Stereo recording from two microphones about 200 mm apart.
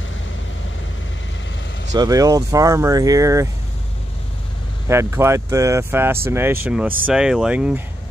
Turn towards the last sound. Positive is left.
turn(degrees=-5)  # may be behind; listen again after turning